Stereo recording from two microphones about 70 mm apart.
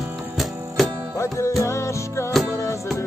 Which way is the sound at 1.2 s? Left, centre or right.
Left.